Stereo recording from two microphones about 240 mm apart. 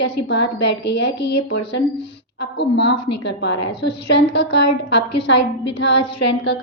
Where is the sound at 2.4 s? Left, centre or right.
Left.